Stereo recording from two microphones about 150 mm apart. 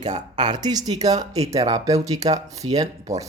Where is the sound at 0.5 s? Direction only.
25° right (ahead or behind).